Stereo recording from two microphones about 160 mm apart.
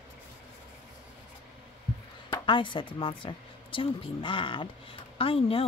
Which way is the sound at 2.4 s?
30° left (ahead or behind).